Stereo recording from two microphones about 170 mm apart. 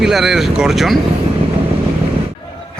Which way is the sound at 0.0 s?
Centre (ahead or behind).